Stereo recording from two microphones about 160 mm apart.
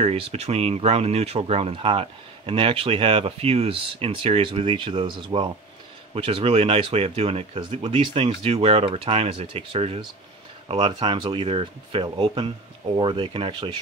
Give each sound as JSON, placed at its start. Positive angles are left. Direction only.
{"t": 0.0, "sound": "speech", "side_deg": -40}